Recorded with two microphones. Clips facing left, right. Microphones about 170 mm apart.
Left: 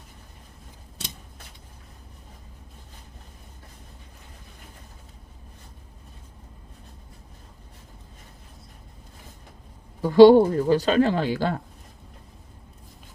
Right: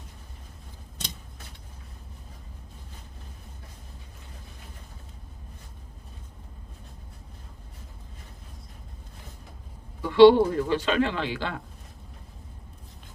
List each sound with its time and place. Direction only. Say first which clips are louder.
10.0 s speech: left 3 dB; 40° left (ahead or behind)